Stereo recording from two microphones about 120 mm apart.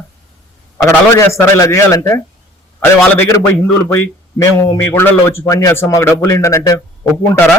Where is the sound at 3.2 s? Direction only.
25° left (ahead or behind).